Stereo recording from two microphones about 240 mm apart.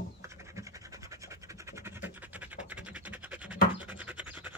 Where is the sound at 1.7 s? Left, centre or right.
Centre.